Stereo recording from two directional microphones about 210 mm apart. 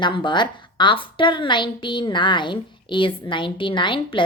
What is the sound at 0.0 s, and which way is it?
A woman's voice, 20° left (ahead or behind).